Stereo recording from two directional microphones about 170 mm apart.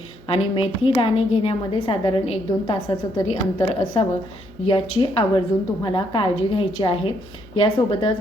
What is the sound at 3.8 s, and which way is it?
A woman's voice, 30° left (ahead or behind).